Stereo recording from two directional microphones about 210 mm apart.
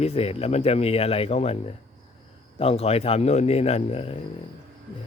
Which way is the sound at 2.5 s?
30° left (ahead or behind).